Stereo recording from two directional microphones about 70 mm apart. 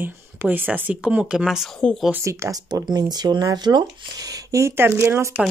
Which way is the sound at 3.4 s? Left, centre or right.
Right.